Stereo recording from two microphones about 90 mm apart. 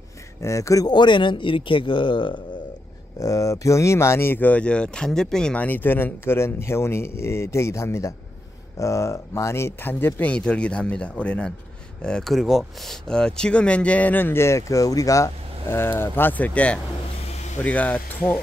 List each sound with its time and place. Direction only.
0.4 s speech: 35° left (ahead or behind)
0.8 s speech: 55° left (ahead or behind)
3.2 s speech: 40° left (ahead or behind); by 18.4 s 20° left (ahead or behind)